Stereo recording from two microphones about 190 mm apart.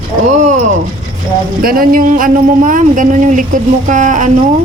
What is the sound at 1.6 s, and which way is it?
Speech, 50° right (ahead or behind).